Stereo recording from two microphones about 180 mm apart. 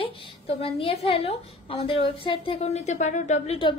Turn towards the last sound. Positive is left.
turn(degrees=40)  # may be behind; listen again after turning